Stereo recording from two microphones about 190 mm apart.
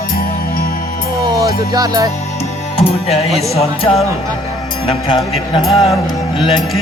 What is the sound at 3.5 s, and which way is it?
Speech, 30° left (ahead or behind).